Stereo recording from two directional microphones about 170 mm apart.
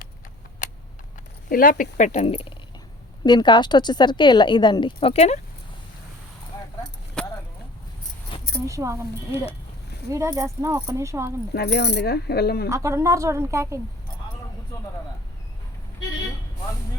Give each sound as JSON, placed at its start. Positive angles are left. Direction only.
{"t": 1.5, "sound": "a woman's voice", "side_deg": 55}
{"t": 7.2, "sound": "a sound", "side_deg": 5}
{"t": 8.6, "sound": "speech", "side_deg": -15}
{"t": 10.1, "sound": "speech", "side_deg": -15}
{"t": 11.5, "sound": "speech", "side_deg": 75}
{"t": 12.6, "sound": "speech", "side_deg": -15}